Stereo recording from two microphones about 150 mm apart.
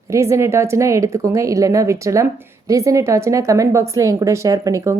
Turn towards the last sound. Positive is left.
turn(degrees=-20)  # may be behind; listen again after turning